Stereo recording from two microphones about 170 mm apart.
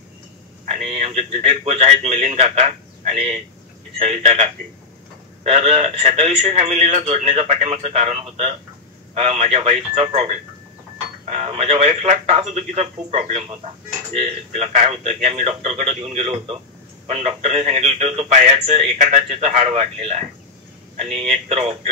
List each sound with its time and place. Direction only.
0.7 s speech: 35° right (ahead or behind)